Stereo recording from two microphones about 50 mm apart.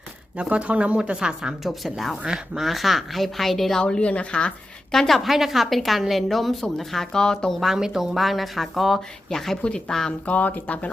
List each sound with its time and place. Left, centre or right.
0.3 s a woman's voice: right
1.6 s a woman's voice: centre
2.2 s a woman's voice: centre
2.6 s a woman's voice: centre
3.8 s a woman's voice: left
4.9 s a woman's voice: centre
7.8 s a woman's voice: centre
10.1 s speech: left